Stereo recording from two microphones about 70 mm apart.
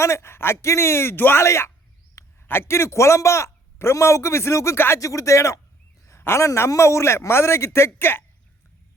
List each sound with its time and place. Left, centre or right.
0.0 s a man's voice: left
4.9 s a man's voice: left